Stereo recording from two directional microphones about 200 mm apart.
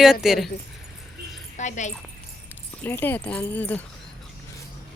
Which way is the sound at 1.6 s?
35° left (ahead or behind).